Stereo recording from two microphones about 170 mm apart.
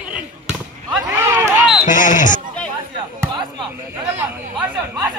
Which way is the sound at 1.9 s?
50° left (ahead or behind).